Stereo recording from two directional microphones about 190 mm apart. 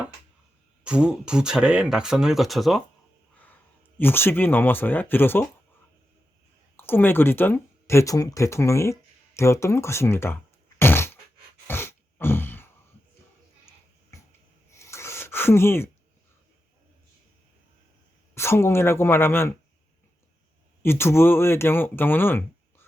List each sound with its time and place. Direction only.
0.9 s speech: 5° right (ahead or behind); by 5.5 s 10° left (ahead or behind)
6.7 s speech: 10° left (ahead or behind)
10.8 s a sound: 10° left (ahead or behind)
14.1 s writing: 15° left (ahead or behind)
14.7 s a sound: 15° left (ahead or behind)
18.3 s speech: 15° left (ahead or behind)
20.8 s speech: 15° left (ahead or behind)